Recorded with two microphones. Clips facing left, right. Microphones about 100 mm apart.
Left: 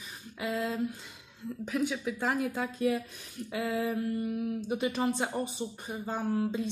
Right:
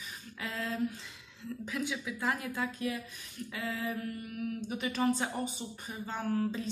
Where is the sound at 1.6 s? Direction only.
20° left (ahead or behind).